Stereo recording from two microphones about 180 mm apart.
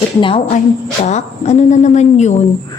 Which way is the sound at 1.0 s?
40° left (ahead or behind).